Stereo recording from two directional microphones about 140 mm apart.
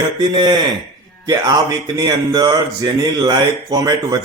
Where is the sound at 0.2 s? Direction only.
35° right (ahead or behind).